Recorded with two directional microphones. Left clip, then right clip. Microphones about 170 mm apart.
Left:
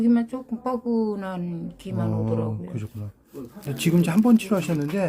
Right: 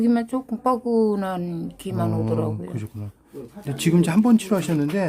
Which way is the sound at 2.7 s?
15° right (ahead or behind).